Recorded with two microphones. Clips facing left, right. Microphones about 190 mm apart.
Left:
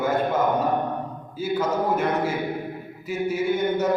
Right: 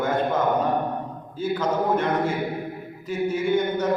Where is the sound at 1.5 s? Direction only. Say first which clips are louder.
Even; 10° left (ahead or behind).